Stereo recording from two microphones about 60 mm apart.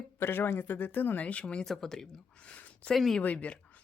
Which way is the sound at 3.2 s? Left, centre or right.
Left.